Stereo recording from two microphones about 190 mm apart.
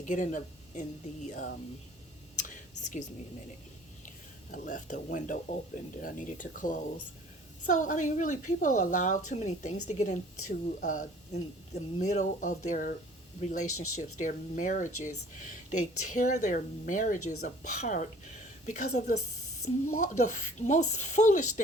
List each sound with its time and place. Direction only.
0.0 s a woman's voice: 40° left (ahead or behind)
2.3 s whispering: 40° left (ahead or behind)
4.5 s a woman's voice: 45° left (ahead or behind)